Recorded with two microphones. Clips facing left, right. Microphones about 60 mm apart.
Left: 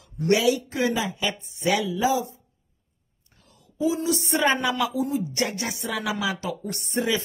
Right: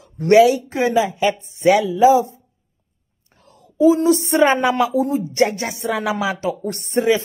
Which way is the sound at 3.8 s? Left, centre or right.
Right.